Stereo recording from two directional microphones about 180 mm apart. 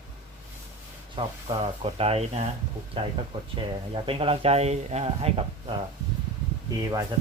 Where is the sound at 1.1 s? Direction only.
30° right (ahead or behind).